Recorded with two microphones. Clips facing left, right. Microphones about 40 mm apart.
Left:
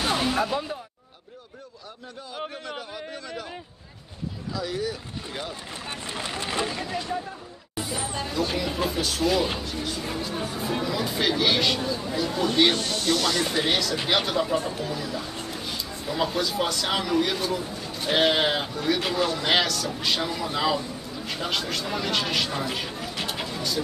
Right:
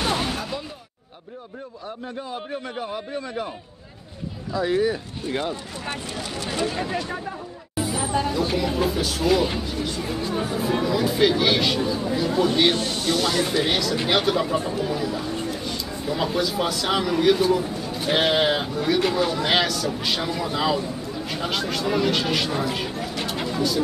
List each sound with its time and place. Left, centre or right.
0.0 s a sound: centre
0.4 s speech: centre
4.5 s speech: right
6.2 s speech: left
6.8 s speech: right
7.7 s a man's voice: centre